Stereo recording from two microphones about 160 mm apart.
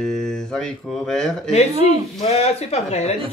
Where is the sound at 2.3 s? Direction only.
40° left (ahead or behind).